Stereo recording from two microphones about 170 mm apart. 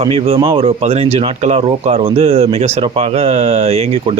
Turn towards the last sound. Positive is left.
turn(degrees=-35)  # may be behind; listen again after turning